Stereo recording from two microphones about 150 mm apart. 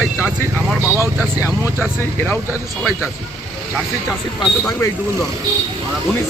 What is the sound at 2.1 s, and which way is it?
Speech, 15° left (ahead or behind).